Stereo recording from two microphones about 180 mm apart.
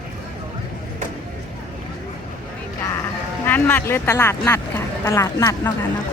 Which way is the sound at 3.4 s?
10° left (ahead or behind).